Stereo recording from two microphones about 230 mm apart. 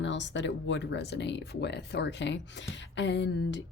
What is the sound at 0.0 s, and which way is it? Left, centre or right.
Speech, left.